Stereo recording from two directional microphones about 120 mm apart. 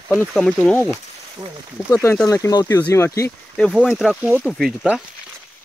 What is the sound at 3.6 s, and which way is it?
Speech, 10° left (ahead or behind).